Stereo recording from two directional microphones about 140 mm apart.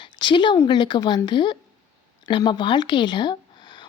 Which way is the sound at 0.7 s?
30° left (ahead or behind).